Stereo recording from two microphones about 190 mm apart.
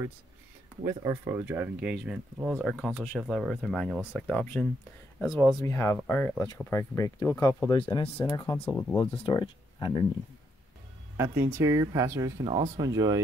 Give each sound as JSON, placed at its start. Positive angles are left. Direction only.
{"t": 0.8, "sound": "speech", "side_deg": -15}
{"t": 4.1, "sound": "speech", "side_deg": 10}
{"t": 5.6, "sound": "speech", "side_deg": 15}
{"t": 9.1, "sound": "speech", "side_deg": 25}
{"t": 11.1, "sound": "speech", "side_deg": -15}